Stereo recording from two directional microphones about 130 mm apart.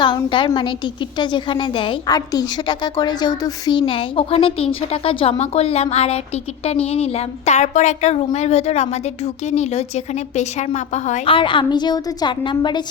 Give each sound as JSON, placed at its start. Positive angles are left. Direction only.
{"t": 0.0, "sound": "a woman's voice", "side_deg": 40}
{"t": 2.0, "sound": "a woman's voice", "side_deg": 30}
{"t": 11.3, "sound": "a woman's voice", "side_deg": 40}